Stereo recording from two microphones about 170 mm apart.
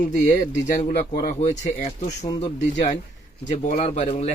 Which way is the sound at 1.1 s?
65° left (ahead or behind).